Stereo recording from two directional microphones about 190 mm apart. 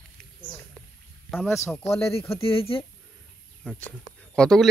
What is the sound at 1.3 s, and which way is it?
Speech, 10° left (ahead or behind).